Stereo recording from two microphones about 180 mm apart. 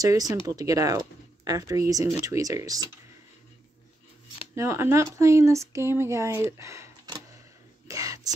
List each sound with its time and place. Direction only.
0.0 s speech: 20° right (ahead or behind)
4.6 s speech: 15° right (ahead or behind)
6.6 s a sound: 15° right (ahead or behind)
7.9 s whispering: 20° right (ahead or behind)